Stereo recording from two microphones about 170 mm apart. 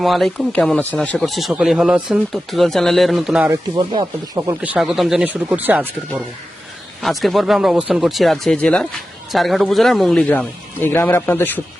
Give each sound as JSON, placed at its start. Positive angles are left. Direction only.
{"t": 0.0, "sound": "speech", "side_deg": 0}
{"t": 3.5, "sound": "speech", "side_deg": -25}
{"t": 7.0, "sound": "speech", "side_deg": 0}